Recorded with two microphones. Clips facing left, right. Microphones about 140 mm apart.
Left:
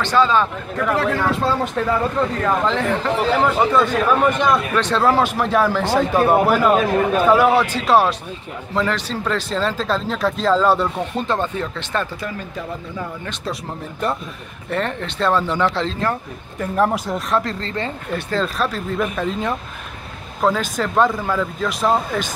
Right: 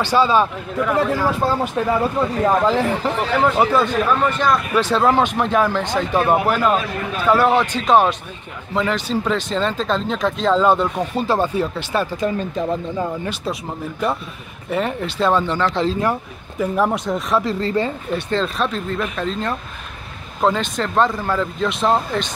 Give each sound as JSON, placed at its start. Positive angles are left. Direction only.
{"t": 0.0, "sound": "speech", "side_deg": -10}
{"t": 6.8, "sound": "speech", "side_deg": 45}
{"t": 7.2, "sound": "speech", "side_deg": 10}
{"t": 12.2, "sound": "speech", "side_deg": -25}
{"t": 14.7, "sound": "speech", "side_deg": -5}
{"t": 15.8, "sound": "speech", "side_deg": -10}